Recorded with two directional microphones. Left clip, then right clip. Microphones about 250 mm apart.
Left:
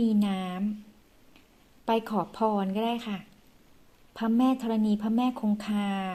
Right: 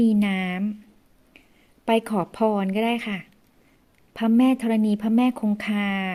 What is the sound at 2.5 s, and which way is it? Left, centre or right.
Speech, right.